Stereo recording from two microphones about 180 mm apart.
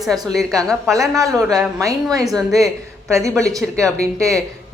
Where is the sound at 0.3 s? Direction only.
5° left (ahead or behind).